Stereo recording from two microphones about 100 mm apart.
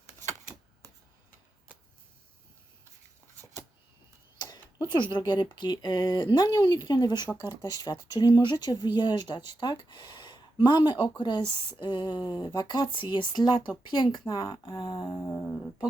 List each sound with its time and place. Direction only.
4.4 s speech: 45° left (ahead or behind)
14.3 s speech: 35° left (ahead or behind)
14.7 s humming: 60° left (ahead or behind)
15.2 s humming: 25° left (ahead or behind)